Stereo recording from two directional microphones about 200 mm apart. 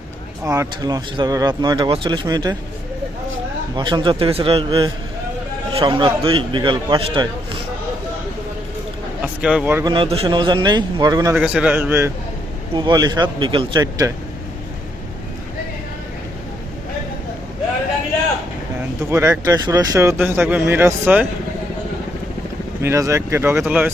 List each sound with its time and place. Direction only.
0.4 s speech: 15° right (ahead or behind)
3.8 s speech: 25° right (ahead or behind)
9.2 s speech: 5° right (ahead or behind)
9.9 s speech: 25° right (ahead or behind)
11.3 s speech: 5° right (ahead or behind)
12.7 s speech: 20° right (ahead or behind)
18.8 s speech: 10° right (ahead or behind)
22.8 s speech: 15° right (ahead or behind)